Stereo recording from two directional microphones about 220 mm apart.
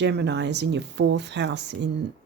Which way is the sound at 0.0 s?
50° right (ahead or behind).